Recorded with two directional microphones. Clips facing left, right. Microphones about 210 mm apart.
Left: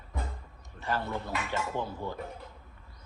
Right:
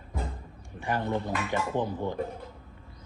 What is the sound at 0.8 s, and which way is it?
Speech, 15° right (ahead or behind).